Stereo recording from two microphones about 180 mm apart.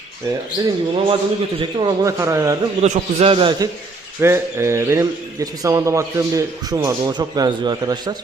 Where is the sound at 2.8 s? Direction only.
35° right (ahead or behind).